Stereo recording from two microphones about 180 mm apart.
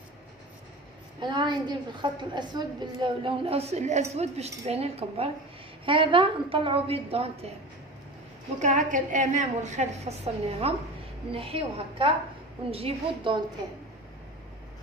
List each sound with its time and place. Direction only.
1.2 s a woman's voice: 25° right (ahead or behind)
8.5 s a woman's voice: 45° right (ahead or behind)